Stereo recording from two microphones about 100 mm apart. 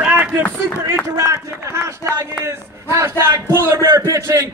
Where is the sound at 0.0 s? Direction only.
15° right (ahead or behind).